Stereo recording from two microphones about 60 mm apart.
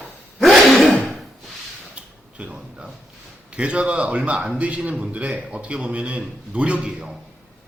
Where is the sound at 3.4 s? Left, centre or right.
Centre.